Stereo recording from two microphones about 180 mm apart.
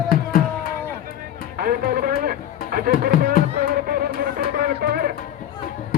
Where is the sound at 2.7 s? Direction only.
55° right (ahead or behind).